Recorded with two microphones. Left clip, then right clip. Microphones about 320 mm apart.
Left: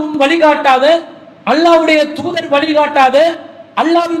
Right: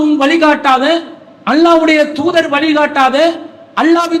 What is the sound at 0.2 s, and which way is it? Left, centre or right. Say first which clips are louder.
A man's voice: left 5 dB; right.